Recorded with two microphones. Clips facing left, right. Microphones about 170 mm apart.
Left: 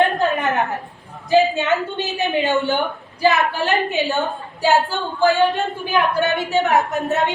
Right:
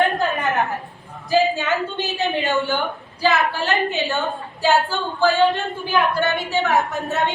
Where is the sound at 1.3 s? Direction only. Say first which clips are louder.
Left 3 dB; 20° left (ahead or behind).